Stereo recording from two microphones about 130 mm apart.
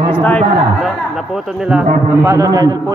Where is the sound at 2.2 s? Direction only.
20° right (ahead or behind).